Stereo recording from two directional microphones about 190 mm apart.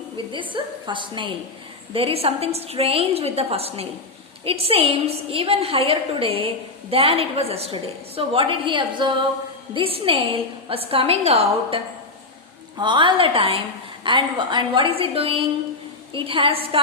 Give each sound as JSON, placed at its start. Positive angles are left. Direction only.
{"t": 0.2, "sound": "a woman's voice", "side_deg": -25}
{"t": 12.8, "sound": "a woman's voice", "side_deg": -25}